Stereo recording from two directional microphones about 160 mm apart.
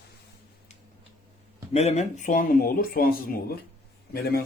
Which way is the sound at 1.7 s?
40° left (ahead or behind).